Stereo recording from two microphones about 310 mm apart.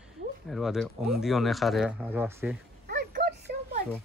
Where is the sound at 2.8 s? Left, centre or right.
Right.